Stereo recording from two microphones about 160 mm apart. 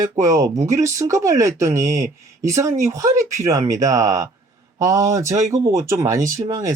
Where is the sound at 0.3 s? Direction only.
20° right (ahead or behind).